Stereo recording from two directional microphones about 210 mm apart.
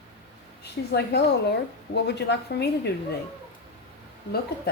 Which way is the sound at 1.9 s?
55° left (ahead or behind).